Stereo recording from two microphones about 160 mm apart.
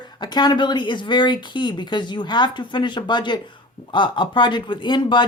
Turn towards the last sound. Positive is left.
turn(degrees=30)  # may be behind; listen again after turning